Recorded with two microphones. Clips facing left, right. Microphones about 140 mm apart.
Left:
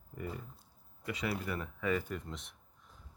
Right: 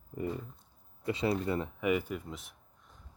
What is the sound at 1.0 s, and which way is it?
Speech, 25° right (ahead or behind).